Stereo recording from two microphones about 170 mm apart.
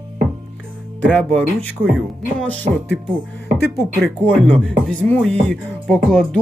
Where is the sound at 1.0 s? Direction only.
10° left (ahead or behind).